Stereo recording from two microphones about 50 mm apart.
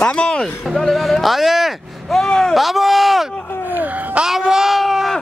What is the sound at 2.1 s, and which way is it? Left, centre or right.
Speech, centre.